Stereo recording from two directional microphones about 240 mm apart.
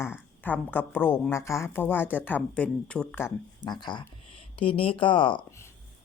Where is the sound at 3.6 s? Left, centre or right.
Centre.